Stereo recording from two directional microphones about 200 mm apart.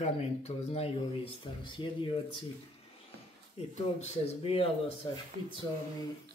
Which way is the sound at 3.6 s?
30° left (ahead or behind).